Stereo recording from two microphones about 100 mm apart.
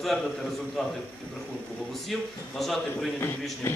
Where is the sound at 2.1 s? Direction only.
Centre (ahead or behind).